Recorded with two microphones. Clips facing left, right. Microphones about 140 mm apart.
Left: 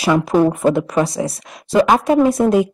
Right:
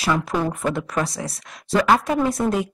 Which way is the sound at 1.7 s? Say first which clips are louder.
Left 4 dB; 20° left (ahead or behind).